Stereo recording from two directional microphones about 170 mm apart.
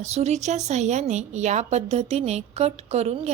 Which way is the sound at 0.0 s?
40° right (ahead or behind).